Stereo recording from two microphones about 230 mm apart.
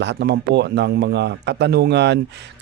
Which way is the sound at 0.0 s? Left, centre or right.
Right.